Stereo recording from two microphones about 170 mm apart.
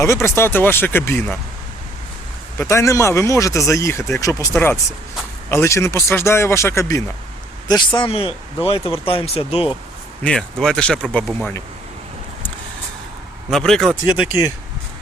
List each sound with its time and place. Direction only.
0.0 s speech: 15° left (ahead or behind)
2.6 s speech: 15° left (ahead or behind); by 9.7 s 35° left (ahead or behind)
10.2 s speech: 5° left (ahead or behind)
13.5 s speech: 5° left (ahead or behind)